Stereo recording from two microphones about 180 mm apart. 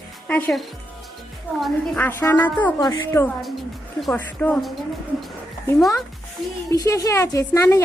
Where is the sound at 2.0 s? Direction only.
10° left (ahead or behind).